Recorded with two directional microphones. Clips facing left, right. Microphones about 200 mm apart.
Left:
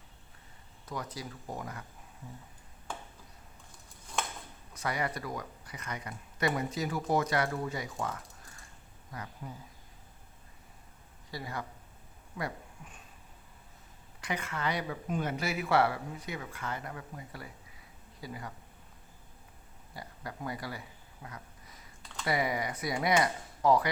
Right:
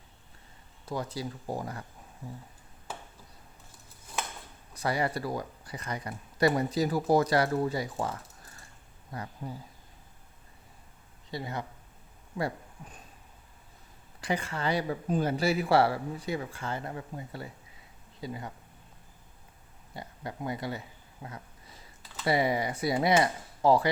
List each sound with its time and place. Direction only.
0.9 s speech: 30° right (ahead or behind)
4.7 s speech: 30° right (ahead or behind)
9.4 s speech: 35° right (ahead or behind)
11.3 s speech: 25° right (ahead or behind)
12.4 s speech: 35° right (ahead or behind)
14.2 s speech: 30° right (ahead or behind)
19.9 s a sound: 25° right (ahead or behind)
22.3 s speech: 30° right (ahead or behind)